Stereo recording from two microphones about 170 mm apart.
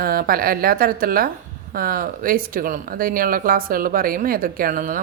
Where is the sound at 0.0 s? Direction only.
60° right (ahead or behind).